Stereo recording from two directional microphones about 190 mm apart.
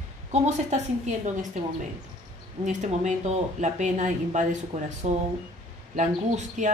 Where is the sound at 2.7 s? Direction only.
40° right (ahead or behind).